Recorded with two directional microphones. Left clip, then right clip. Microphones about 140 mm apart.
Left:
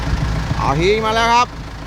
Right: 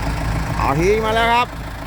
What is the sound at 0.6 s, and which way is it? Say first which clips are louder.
Speech: left 1 dB; centre (ahead or behind).